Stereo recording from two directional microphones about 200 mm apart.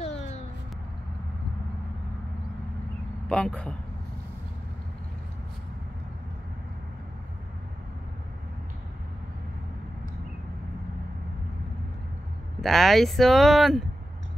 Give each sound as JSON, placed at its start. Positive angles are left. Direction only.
{"t": 0.0, "sound": "a sound", "side_deg": 35}
{"t": 3.3, "sound": "speech", "side_deg": 5}
{"t": 12.6, "sound": "speech", "side_deg": 0}